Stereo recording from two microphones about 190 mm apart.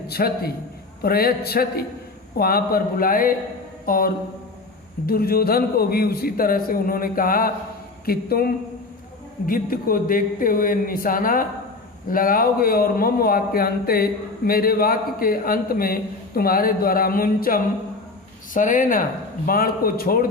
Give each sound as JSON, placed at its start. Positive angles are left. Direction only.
{"t": 0.1, "sound": "a man's voice", "side_deg": 55}